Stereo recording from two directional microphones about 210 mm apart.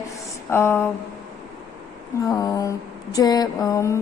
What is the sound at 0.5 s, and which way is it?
Speech, 10° left (ahead or behind).